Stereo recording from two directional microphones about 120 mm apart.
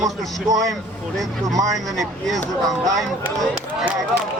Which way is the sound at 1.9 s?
Centre (ahead or behind).